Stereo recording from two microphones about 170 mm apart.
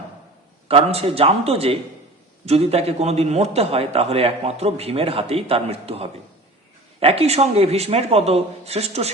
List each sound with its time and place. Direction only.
0.7 s a man's voice: 35° right (ahead or behind)